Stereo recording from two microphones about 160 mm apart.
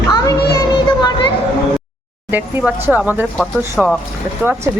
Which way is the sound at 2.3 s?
10° right (ahead or behind).